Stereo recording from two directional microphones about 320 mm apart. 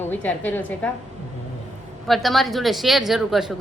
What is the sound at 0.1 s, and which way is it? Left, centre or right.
Speech, centre.